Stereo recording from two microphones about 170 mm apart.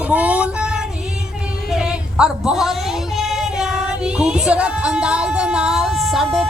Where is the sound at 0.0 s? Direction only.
10° right (ahead or behind).